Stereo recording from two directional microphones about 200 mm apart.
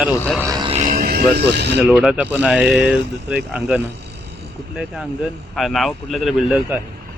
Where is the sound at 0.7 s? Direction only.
45° right (ahead or behind).